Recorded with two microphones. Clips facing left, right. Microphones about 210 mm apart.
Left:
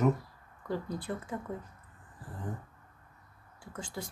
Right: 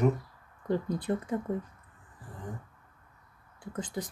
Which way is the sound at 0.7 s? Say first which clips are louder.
Right 6 dB; 20° right (ahead or behind).